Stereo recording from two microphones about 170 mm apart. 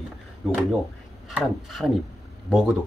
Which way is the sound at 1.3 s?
Centre (ahead or behind).